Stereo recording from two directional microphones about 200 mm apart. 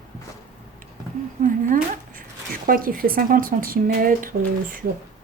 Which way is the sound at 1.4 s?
40° right (ahead or behind).